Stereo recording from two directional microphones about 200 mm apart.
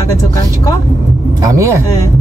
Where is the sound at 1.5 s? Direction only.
15° right (ahead or behind).